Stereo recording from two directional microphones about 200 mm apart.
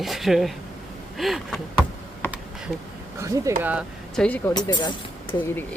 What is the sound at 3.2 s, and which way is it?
Speech, 15° right (ahead or behind).